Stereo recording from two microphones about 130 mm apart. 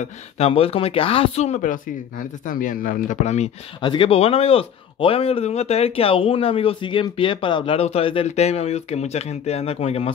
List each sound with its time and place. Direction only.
0.0 s speech: 50° left (ahead or behind)
3.8 s a man's voice: 40° left (ahead or behind)